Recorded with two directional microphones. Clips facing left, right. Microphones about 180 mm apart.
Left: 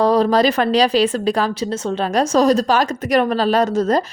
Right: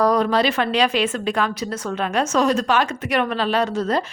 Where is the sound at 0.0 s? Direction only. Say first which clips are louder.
Left 4 dB; 30° left (ahead or behind).